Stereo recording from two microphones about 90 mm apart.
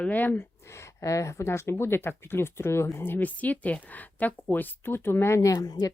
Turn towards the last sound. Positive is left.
turn(degrees=45)  # may be behind; listen again after turning